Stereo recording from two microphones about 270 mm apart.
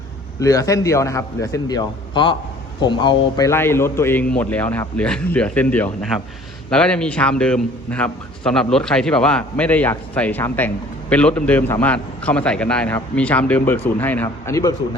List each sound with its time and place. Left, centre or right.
0.3 s a man's voice: centre